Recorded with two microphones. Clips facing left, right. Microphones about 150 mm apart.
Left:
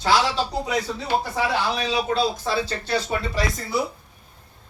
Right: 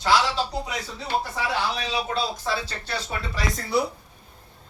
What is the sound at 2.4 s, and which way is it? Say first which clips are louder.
Speech: left 4 dB; 20° left (ahead or behind).